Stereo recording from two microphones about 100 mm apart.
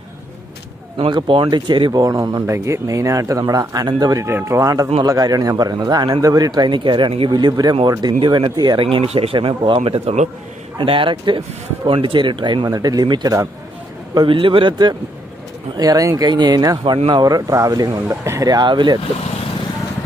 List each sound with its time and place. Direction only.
1.1 s speech: 60° right (ahead or behind)
7.2 s speech: 45° right (ahead or behind); by 10.1 s 75° right (ahead or behind)
10.8 s speech: 60° right (ahead or behind)
12.6 s speech: 40° right (ahead or behind)
14.1 s speech: 60° right (ahead or behind)
15.8 s speech: 35° right (ahead or behind)